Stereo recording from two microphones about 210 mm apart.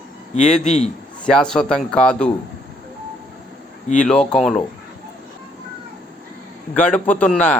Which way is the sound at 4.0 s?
5° left (ahead or behind).